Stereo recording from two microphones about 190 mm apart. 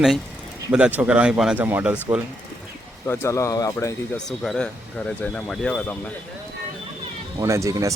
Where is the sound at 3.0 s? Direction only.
15° left (ahead or behind).